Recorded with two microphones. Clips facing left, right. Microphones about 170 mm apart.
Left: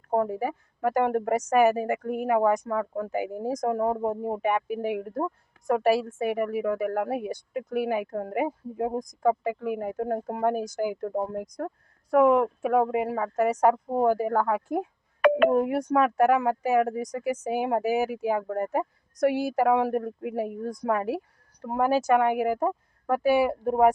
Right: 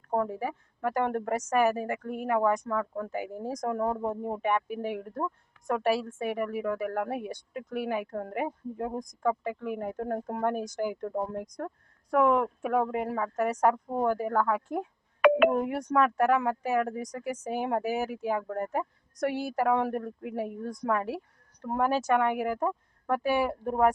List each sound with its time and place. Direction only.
0.1 s a woman's voice: 10° left (ahead or behind)
15.2 s telephone dialing: 40° left (ahead or behind)
15.5 s a woman's voice: 5° left (ahead or behind)